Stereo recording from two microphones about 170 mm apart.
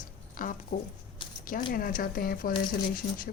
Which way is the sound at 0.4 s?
50° left (ahead or behind).